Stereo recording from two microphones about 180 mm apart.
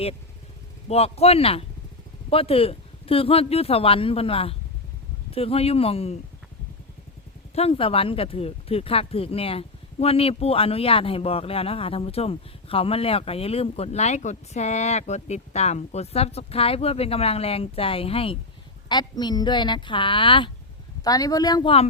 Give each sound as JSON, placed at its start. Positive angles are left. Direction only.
{"t": 0.9, "sound": "speech", "side_deg": 35}
{"t": 7.5, "sound": "a woman's voice", "side_deg": 30}